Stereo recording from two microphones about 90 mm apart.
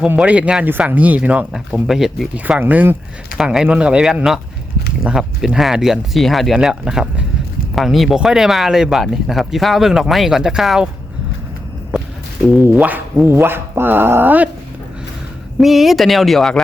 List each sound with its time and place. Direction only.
0.2 s speech: 15° right (ahead or behind)
1.5 s speech: 5° right (ahead or behind)
2.3 s speech: 15° right (ahead or behind)
3.3 s speech: 5° right (ahead or behind)
12.7 s a sound: 20° right (ahead or behind)
15.6 s speech: centre (ahead or behind)